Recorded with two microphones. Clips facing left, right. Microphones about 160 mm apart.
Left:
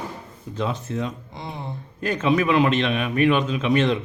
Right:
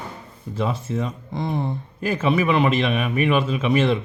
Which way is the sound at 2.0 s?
5° right (ahead or behind).